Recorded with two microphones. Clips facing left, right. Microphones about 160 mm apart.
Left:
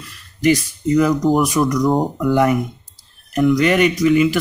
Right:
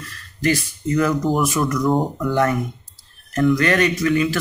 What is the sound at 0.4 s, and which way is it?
Speech, 15° left (ahead or behind).